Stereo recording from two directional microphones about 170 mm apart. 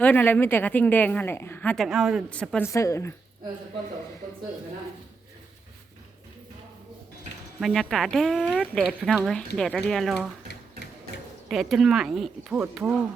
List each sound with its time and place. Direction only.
0.0 s a woman's voice: 10° left (ahead or behind)
2.6 s a woman's voice: 20° left (ahead or behind)
7.6 s speech: centre (ahead or behind)
11.4 s speech: centre (ahead or behind)